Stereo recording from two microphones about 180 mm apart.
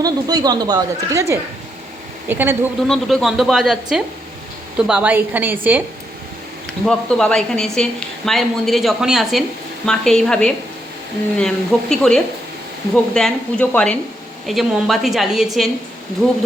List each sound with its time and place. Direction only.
0.0 s a woman's voice: 20° right (ahead or behind)
2.8 s a woman's voice: centre (ahead or behind)
6.8 s a woman's voice: 5° left (ahead or behind)